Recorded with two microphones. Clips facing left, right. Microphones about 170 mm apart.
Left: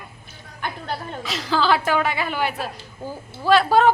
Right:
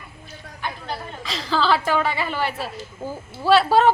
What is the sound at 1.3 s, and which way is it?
A woman's voice, 5° left (ahead or behind).